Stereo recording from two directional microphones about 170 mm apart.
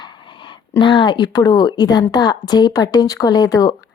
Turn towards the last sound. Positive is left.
turn(degrees=20)  # may be behind; listen again after turning